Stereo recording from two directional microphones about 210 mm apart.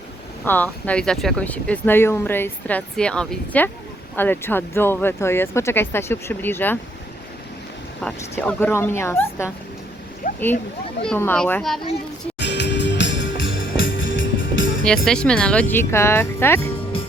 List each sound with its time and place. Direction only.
0.4 s speech: 10° left (ahead or behind)
8.0 s speech: 5° left (ahead or behind)
10.2 s a sound: 40° left (ahead or behind)
11.0 s a child's voice: 5° left (ahead or behind)
12.4 s music: 55° left (ahead or behind)
15.0 s speech: 5° left (ahead or behind)